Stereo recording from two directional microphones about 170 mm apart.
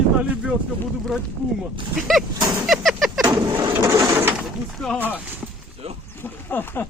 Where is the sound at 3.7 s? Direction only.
20° right (ahead or behind).